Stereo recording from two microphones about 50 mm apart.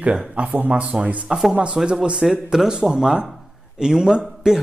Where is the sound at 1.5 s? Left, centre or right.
Right.